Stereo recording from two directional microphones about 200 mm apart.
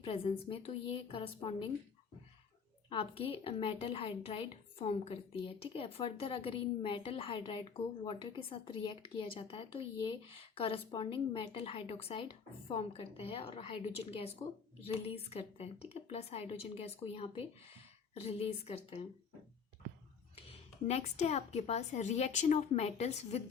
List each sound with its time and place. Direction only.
0.0 s a woman's voice: 25° left (ahead or behind)
2.9 s a woman's voice: 25° left (ahead or behind)
20.8 s speech: 35° left (ahead or behind)